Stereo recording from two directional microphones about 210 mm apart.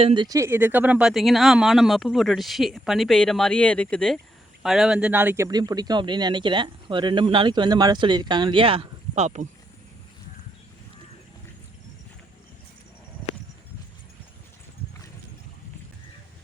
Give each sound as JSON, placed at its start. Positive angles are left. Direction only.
{"t": 0.0, "sound": "speech", "side_deg": -25}